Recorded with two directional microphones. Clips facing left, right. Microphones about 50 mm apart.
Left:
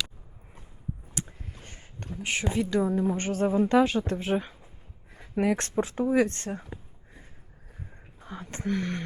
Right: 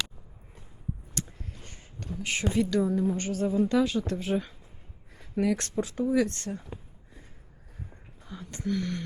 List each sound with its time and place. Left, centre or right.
1.1 s a sound: left
3.2 s speech: left
8.2 s speech: left